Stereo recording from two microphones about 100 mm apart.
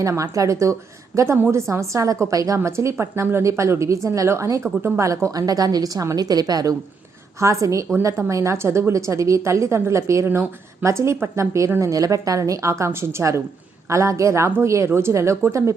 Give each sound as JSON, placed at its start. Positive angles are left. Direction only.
{"t": 0.0, "sound": "a woman's voice", "side_deg": -35}